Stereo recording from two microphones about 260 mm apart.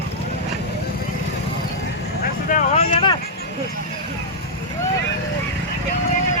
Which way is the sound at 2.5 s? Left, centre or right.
Left.